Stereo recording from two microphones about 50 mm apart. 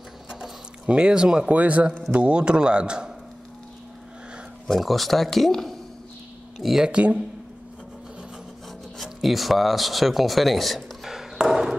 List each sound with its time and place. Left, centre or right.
0.8 s speech: centre
1.5 s a man's voice: right
4.6 s speech: centre
6.6 s speech: centre
6.9 s a man's voice: right
8.9 s speech: centre